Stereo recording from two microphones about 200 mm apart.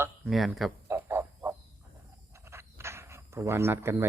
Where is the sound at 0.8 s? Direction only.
10° right (ahead or behind).